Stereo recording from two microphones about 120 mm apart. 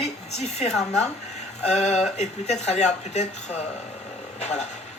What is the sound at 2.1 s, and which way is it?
Speech, 70° left (ahead or behind).